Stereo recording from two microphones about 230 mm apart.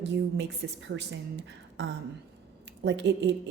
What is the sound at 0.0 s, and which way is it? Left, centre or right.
Speech, right.